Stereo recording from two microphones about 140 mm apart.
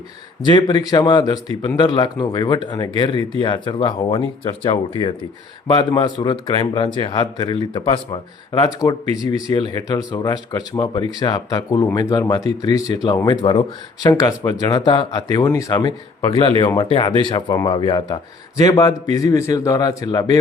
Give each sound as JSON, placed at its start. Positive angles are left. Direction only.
{"t": 0.4, "sound": "speech", "side_deg": 30}
{"t": 16.9, "sound": "speech", "side_deg": 35}
{"t": 17.5, "sound": "speech", "side_deg": 25}